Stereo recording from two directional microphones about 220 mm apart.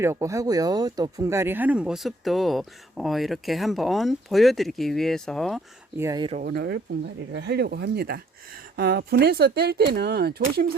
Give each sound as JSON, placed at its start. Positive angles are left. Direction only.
{"t": 0.0, "sound": "speech", "side_deg": -15}
{"t": 6.0, "sound": "speech", "side_deg": -15}
{"t": 6.4, "sound": "speech", "side_deg": -45}